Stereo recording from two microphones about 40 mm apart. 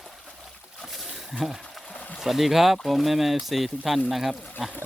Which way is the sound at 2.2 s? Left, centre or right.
Centre.